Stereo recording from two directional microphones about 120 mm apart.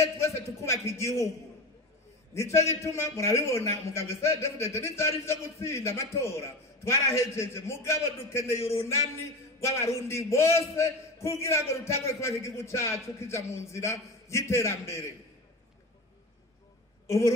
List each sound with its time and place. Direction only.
0.0 s a man's voice: 25° left (ahead or behind)
2.5 s a man's voice: 25° left (ahead or behind)